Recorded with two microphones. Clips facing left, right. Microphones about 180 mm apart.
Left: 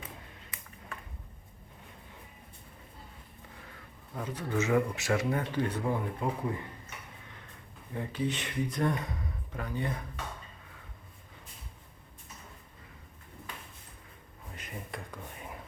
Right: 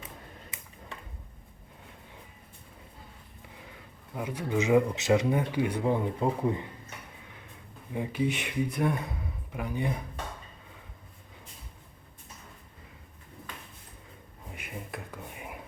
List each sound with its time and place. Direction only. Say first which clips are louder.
4.1 s speech: right 3 dB; 10° right (ahead or behind)
7.9 s speech: right 4 dB; 10° right (ahead or behind)
14.5 s a sound: right 2 dB; 10° right (ahead or behind)